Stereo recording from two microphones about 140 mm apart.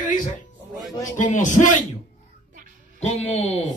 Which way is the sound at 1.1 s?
65° left (ahead or behind).